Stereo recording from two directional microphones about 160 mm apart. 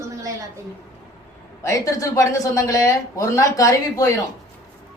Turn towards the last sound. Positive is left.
turn(degrees=20)  # may be behind; listen again after turning